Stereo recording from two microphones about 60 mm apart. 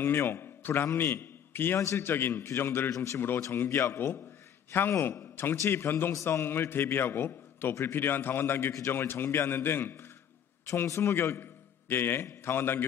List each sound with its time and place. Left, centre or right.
0.0 s a man's voice: left
2.9 s a man's voice: left
3.5 s a man's voice: left